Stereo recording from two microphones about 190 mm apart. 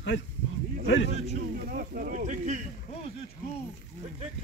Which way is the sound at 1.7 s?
50° right (ahead or behind).